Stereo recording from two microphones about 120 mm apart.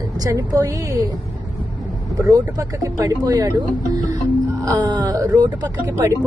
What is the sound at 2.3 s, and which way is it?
Speech, 30° right (ahead or behind).